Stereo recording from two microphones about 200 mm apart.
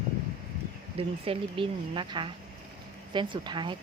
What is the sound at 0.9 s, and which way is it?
Speech, 30° right (ahead or behind).